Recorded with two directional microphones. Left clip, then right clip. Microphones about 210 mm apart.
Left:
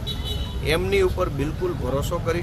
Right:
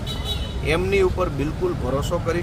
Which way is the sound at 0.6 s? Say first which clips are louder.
Right 1 dB; 5° right (ahead or behind).